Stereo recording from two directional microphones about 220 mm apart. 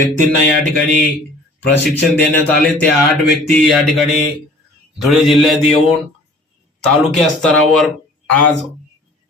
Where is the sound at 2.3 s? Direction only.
10° left (ahead or behind).